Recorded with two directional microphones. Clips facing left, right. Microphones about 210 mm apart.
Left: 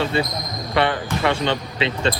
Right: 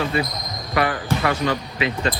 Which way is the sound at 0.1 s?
30° left (ahead or behind).